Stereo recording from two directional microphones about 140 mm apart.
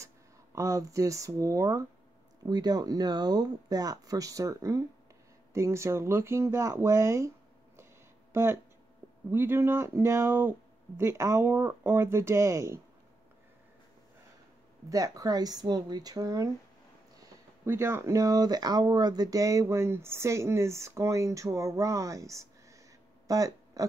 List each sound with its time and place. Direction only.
0.6 s speech: 20° right (ahead or behind)
8.3 s speech: 20° right (ahead or behind)
14.9 s speech: 25° right (ahead or behind)
23.2 s a sound: 25° right (ahead or behind)